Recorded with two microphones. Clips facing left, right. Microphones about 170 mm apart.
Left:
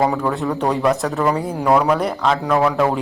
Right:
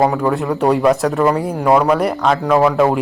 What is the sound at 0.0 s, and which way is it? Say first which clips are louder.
Speech: right 3 dB; 5° right (ahead or behind).